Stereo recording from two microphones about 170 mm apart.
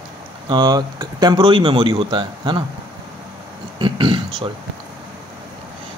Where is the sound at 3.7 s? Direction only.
30° right (ahead or behind).